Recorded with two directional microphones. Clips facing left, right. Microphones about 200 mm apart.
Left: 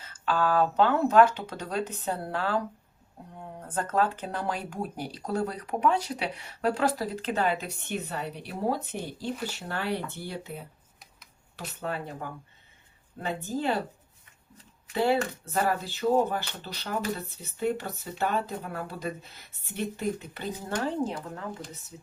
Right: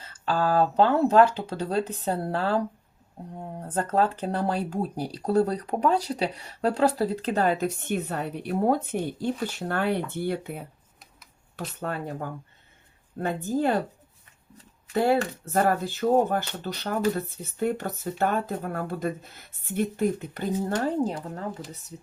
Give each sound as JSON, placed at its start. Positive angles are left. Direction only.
{"t": 0.0, "sound": "speech", "side_deg": -35}
{"t": 14.9, "sound": "speech", "side_deg": -50}